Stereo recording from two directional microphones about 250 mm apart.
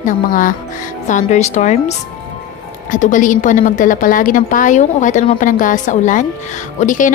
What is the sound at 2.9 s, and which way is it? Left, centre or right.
A woman's voice, left.